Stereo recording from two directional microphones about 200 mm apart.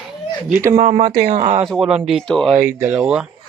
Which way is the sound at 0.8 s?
35° right (ahead or behind).